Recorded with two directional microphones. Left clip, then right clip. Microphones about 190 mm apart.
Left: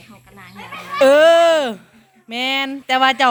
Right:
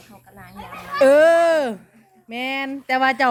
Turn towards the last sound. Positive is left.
turn(degrees=-5)  # may be behind; listen again after turning